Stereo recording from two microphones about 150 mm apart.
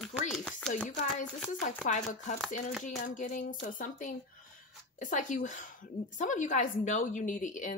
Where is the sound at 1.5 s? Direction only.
55° left (ahead or behind).